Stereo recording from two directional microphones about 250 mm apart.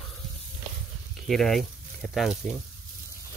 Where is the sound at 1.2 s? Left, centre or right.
Centre.